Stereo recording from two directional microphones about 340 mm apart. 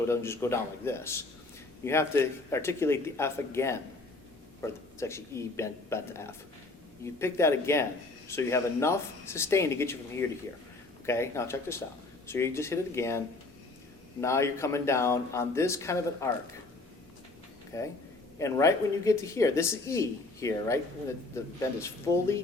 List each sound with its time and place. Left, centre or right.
0.0 s speech: centre
17.7 s speech: centre